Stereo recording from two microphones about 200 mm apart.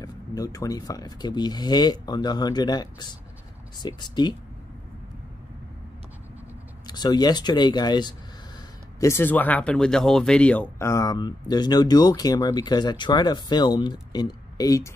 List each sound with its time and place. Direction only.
0.0 s speech: 20° left (ahead or behind)
6.9 s speech: 20° left (ahead or behind)